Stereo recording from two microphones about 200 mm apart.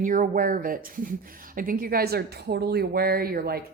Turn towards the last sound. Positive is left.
turn(degrees=-50)  # may be behind; listen again after turning